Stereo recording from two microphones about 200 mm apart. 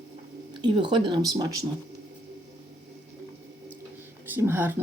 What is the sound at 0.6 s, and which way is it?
Speech, 25° right (ahead or behind).